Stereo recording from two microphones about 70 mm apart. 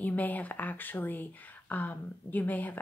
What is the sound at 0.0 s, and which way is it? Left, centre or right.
Speech, left.